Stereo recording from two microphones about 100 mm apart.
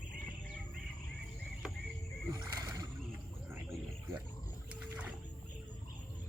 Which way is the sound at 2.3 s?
45° right (ahead or behind).